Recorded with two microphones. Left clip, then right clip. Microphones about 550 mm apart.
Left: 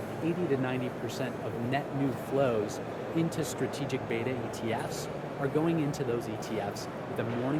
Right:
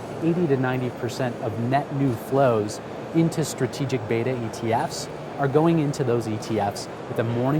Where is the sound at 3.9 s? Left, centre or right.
Right.